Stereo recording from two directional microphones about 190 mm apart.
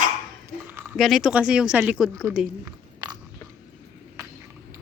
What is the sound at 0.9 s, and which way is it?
Speech, centre (ahead or behind).